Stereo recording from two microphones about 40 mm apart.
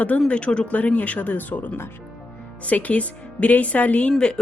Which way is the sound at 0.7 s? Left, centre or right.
Left.